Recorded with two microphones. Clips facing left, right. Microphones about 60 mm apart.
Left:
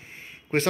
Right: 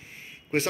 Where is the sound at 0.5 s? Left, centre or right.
Left.